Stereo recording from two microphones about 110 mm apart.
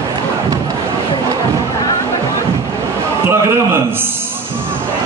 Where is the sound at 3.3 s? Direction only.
25° right (ahead or behind).